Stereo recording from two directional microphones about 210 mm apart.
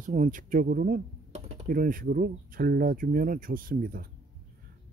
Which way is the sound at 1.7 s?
40° right (ahead or behind).